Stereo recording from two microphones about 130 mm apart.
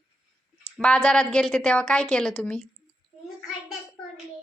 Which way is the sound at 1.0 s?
5° left (ahead or behind).